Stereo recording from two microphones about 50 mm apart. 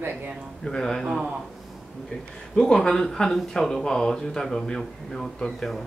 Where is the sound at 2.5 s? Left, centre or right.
Centre.